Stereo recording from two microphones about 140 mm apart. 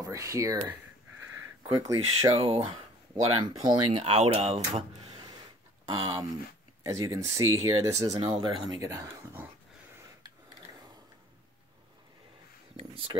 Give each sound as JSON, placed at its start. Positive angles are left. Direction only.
{"t": 0.0, "sound": "speech", "side_deg": -20}
{"t": 1.8, "sound": "speech", "side_deg": -25}
{"t": 2.3, "sound": "speech", "side_deg": -40}
{"t": 5.9, "sound": "speech", "side_deg": -30}
{"t": 8.7, "sound": "speech", "side_deg": -25}
{"t": 12.7, "sound": "speech", "side_deg": -40}